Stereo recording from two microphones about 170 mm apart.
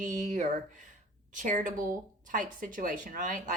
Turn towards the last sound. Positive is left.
turn(degrees=-50)  # may be behind; listen again after turning